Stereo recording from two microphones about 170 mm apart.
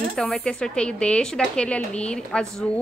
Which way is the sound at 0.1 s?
5° left (ahead or behind).